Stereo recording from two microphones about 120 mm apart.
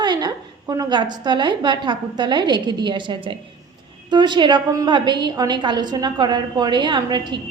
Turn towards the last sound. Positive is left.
turn(degrees=-40)  # may be behind; listen again after turning